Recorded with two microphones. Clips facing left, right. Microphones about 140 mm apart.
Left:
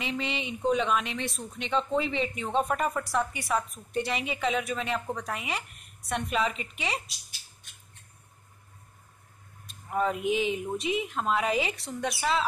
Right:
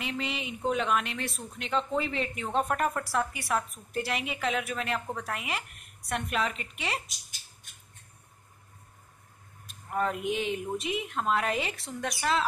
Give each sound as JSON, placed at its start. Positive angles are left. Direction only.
{"t": 0.0, "sound": "speech", "side_deg": 0}
{"t": 7.1, "sound": "speech", "side_deg": -45}
{"t": 9.7, "sound": "speech", "side_deg": 0}